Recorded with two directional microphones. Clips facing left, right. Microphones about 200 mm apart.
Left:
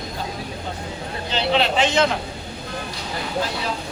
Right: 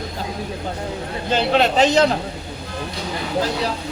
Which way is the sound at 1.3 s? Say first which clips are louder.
Right 3 dB; 45° right (ahead or behind).